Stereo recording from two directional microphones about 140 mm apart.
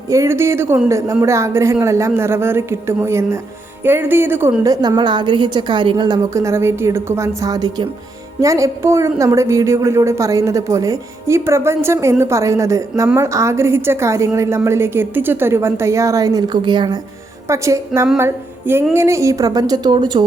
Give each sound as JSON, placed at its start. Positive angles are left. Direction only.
{"t": 0.1, "sound": "a woman's voice", "side_deg": -20}
{"t": 6.3, "sound": "a woman's voice", "side_deg": -20}
{"t": 17.5, "sound": "a woman's voice", "side_deg": -20}